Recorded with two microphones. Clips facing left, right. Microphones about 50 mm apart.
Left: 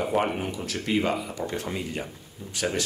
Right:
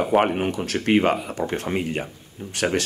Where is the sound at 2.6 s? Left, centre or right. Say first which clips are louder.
Right 5 dB; right.